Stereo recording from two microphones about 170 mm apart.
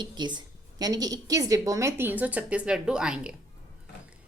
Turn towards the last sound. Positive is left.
turn(degrees=-5)  # may be behind; listen again after turning